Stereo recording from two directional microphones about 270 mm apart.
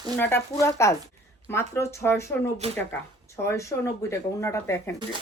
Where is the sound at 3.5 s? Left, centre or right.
Centre.